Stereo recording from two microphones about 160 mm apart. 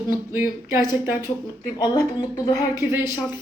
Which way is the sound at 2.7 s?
15° right (ahead or behind).